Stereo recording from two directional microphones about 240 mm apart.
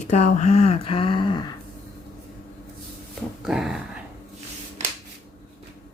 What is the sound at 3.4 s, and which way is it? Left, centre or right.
Speech, centre.